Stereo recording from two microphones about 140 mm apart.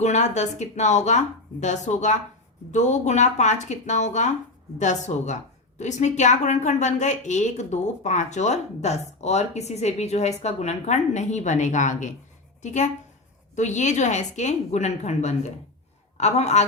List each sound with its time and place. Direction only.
0.0 s a woman's voice: 55° left (ahead or behind)